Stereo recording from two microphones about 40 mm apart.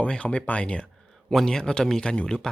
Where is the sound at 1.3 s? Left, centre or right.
Centre.